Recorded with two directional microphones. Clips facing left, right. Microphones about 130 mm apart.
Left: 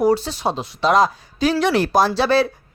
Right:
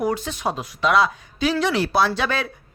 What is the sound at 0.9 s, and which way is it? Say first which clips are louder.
Speech: left 3 dB; 40° left (ahead or behind).